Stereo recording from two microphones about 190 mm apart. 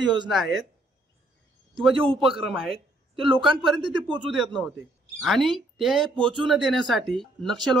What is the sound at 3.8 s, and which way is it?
Speech, 25° right (ahead or behind).